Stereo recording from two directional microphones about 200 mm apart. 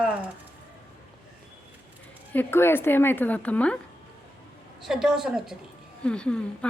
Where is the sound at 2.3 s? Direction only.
10° left (ahead or behind).